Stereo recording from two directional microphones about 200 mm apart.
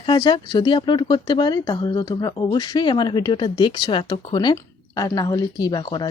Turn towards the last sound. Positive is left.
turn(degrees=20)  # may be behind; listen again after turning